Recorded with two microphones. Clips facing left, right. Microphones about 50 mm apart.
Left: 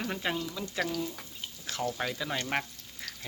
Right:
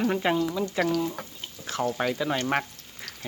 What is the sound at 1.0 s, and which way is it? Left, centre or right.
Speech, right.